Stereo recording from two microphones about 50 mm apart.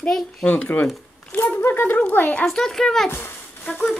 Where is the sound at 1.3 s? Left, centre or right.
Left.